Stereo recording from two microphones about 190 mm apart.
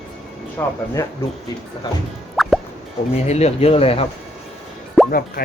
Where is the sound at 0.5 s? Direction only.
15° left (ahead or behind).